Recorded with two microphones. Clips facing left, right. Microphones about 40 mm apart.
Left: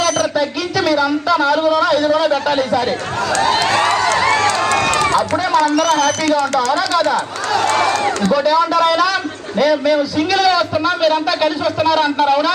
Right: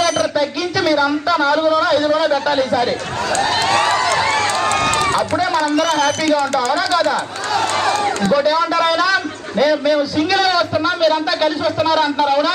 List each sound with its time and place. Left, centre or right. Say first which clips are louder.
0.3 s a man's voice: even; centre
3.4 s run: left 1 dB; left
5.5 s speech: left 4 dB; right
6.7 s a man's voice: left 1 dB; centre
8.3 s a man's voice: left 2 dB; centre